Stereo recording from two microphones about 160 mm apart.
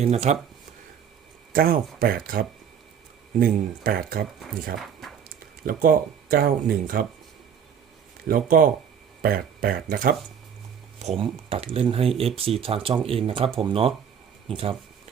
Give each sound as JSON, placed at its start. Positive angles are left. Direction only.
{"t": 0.0, "sound": "speech", "side_deg": -45}
{"t": 1.5, "sound": "speech", "side_deg": -65}
{"t": 4.8, "sound": "a sound", "side_deg": 0}
{"t": 5.6, "sound": "speech", "side_deg": -60}
{"t": 8.3, "sound": "speech", "side_deg": -60}
{"t": 11.0, "sound": "speech", "side_deg": -40}